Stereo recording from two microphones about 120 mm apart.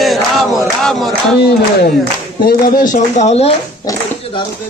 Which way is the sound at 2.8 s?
85° left.